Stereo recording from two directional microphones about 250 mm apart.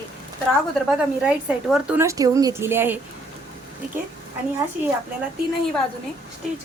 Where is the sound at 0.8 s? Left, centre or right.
Centre.